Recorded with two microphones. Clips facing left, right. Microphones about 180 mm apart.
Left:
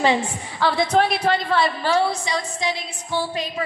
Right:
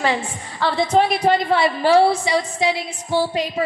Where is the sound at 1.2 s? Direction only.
20° right (ahead or behind).